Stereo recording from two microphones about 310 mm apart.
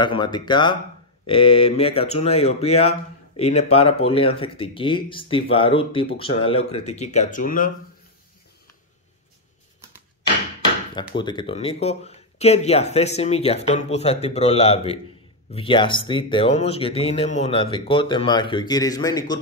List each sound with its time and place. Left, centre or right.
0.0 s speech: centre
11.0 s speech: centre